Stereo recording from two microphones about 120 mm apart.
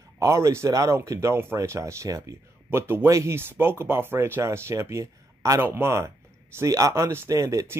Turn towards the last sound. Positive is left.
turn(degrees=-25)  # may be behind; listen again after turning